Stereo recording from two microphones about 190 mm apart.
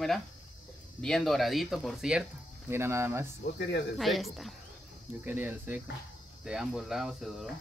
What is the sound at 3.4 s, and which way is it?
Speech, 65° left (ahead or behind).